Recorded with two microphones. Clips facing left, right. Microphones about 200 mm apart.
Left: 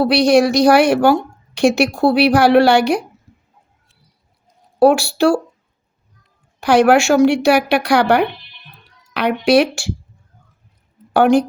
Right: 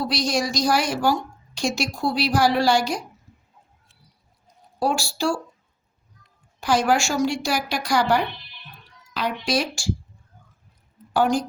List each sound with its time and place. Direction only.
0.0 s a woman's voice: 65° left (ahead or behind)
4.8 s a woman's voice: 65° left (ahead or behind)
6.6 s a woman's voice: 65° left (ahead or behind)
11.1 s a woman's voice: 65° left (ahead or behind)